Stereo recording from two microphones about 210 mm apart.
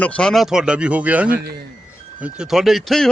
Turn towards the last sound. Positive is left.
turn(degrees=0)  # may be behind; listen again after turning